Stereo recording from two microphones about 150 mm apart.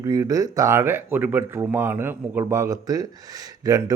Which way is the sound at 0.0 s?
25° right (ahead or behind).